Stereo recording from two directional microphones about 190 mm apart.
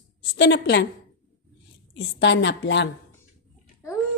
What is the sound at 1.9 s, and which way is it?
Speech, 70° left (ahead or behind).